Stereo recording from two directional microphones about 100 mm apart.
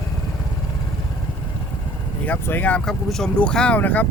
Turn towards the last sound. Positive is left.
turn(degrees=15)  # may be behind; listen again after turning